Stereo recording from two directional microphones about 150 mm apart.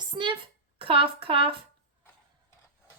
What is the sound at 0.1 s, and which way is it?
Speech, 30° right (ahead or behind).